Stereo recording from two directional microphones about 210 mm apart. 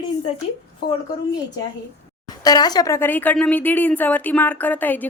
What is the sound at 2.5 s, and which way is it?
Speech, 20° left (ahead or behind).